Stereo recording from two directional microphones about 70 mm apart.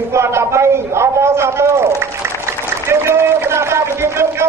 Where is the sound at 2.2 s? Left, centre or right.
Right.